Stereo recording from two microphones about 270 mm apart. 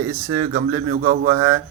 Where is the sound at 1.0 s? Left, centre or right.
Right.